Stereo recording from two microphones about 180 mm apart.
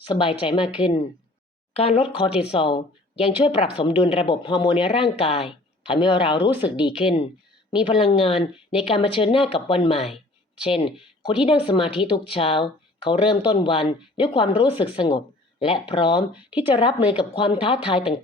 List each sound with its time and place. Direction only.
0.0 s speech: 30° left (ahead or behind)
16.3 s speech: 5° right (ahead or behind)
16.6 s speech: 25° left (ahead or behind)
17.0 s speech: 5° right (ahead or behind)
17.3 s speech: 25° left (ahead or behind)